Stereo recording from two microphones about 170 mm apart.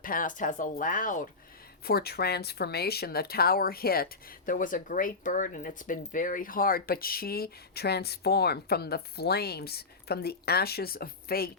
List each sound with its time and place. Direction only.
0.0 s speech: 55° left (ahead or behind)
1.8 s speech: 65° left (ahead or behind)